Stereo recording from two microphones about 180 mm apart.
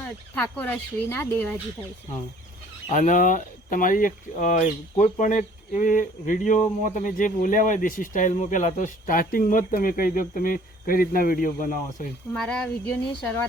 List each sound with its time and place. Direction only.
0.3 s speech: 10° left (ahead or behind)
2.9 s speech: 45° left (ahead or behind)
12.3 s speech: 5° left (ahead or behind)